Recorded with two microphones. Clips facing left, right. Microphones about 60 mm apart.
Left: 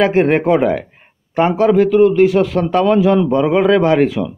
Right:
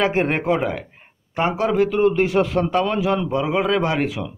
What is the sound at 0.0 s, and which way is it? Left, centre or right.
Speech, centre.